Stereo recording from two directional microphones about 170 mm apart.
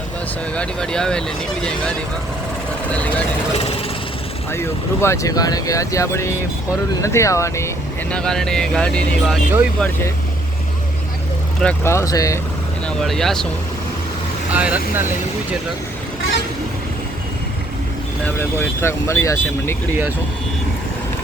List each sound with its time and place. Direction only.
0.5 s speech: 5° left (ahead or behind)
2.9 s speech: 10° left (ahead or behind)
4.5 s speech: 15° left (ahead or behind)
8.1 s speech: 5° left (ahead or behind)
11.6 s speech: 15° left (ahead or behind)
13.0 s speech: centre (ahead or behind)
14.5 s speech: 10° right (ahead or behind)
18.3 s speech: 15° left (ahead or behind)